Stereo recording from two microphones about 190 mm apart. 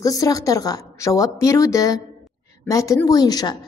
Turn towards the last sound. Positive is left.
turn(degrees=20)  # may be behind; listen again after turning